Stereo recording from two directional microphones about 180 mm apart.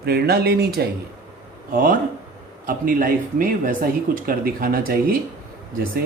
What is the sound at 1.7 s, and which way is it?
Speech, 50° right (ahead or behind).